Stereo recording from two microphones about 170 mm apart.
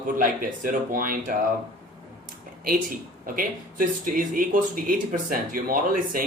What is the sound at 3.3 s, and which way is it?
A man's voice, 55° right (ahead or behind).